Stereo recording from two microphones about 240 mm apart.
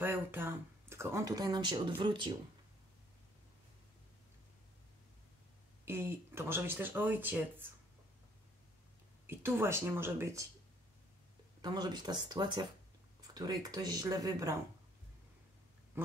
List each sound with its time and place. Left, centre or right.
0.0 s speech: centre
5.9 s speech: centre
9.3 s speech: centre
11.6 s speech: centre